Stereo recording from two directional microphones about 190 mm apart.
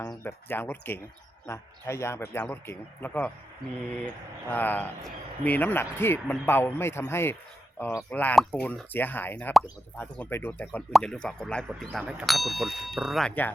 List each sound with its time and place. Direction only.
0.0 s speech: 15° left (ahead or behind)